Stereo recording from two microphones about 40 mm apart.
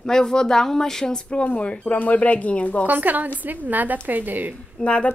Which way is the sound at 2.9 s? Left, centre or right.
Right.